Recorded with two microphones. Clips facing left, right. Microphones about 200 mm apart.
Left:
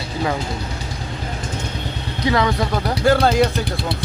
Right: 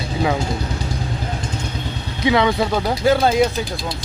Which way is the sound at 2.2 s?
20° right (ahead or behind).